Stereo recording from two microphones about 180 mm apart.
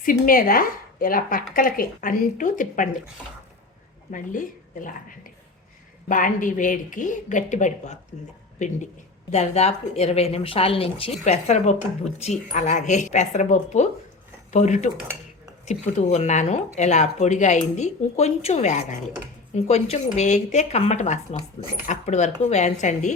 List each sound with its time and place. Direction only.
0.0 s speech: 50° left (ahead or behind)
4.1 s a woman's voice: 45° left (ahead or behind)